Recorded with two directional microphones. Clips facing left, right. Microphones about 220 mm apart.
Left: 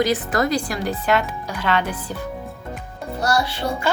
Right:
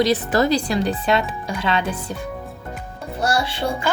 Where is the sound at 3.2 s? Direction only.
25° right (ahead or behind).